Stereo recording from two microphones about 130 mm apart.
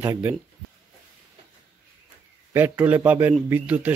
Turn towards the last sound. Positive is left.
turn(degrees=-10)  # may be behind; listen again after turning